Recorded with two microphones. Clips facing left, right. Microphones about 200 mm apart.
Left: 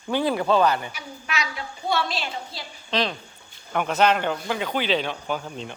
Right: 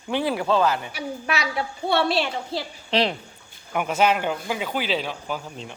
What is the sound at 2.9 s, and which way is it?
Speech, 30° right (ahead or behind).